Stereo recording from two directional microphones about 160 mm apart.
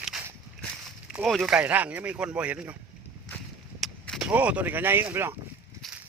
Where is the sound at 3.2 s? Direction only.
Centre (ahead or behind); by 5.3 s 15° right (ahead or behind).